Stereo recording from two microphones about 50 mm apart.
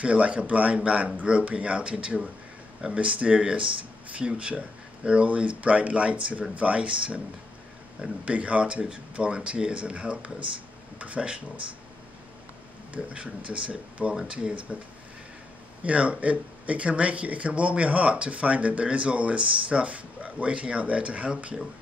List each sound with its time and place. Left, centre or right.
0.0 s speech: right
12.9 s speech: right
15.8 s speech: right